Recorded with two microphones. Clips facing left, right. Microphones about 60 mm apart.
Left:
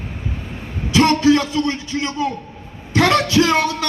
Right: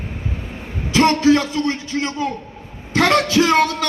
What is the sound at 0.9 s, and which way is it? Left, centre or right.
A man's voice, right.